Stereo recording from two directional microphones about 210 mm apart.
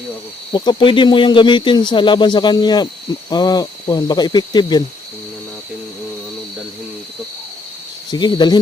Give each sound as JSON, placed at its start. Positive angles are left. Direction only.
{"t": 0.5, "sound": "speech", "side_deg": 20}
{"t": 8.1, "sound": "speech", "side_deg": 20}